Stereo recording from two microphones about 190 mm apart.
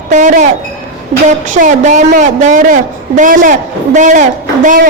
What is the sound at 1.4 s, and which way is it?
A woman's voice, 40° right (ahead or behind).